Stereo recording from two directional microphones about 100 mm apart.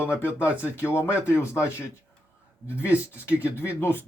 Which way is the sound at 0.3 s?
15° right (ahead or behind).